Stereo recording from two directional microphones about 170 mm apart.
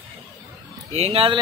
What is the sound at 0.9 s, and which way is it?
Speech, 35° right (ahead or behind).